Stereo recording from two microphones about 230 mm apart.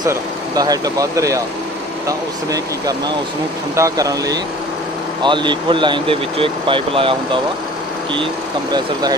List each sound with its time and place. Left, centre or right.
0.0 s speech: centre